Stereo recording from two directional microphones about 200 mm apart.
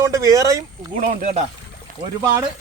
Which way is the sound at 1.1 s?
45° right (ahead or behind).